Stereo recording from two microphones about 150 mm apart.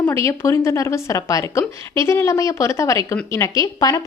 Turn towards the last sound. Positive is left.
turn(degrees=25)  # may be behind; listen again after turning